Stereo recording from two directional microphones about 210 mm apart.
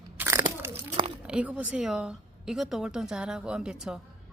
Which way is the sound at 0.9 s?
25° right (ahead or behind).